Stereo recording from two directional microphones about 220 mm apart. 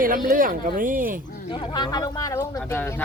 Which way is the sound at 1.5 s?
20° left (ahead or behind).